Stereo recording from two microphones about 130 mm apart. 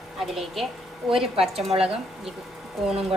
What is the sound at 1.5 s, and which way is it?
Speech, 50° right (ahead or behind).